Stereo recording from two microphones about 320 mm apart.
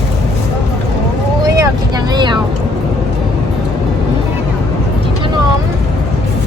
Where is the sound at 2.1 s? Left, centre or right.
Centre.